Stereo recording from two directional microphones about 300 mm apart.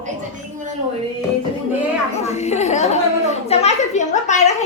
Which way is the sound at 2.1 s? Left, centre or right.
Left.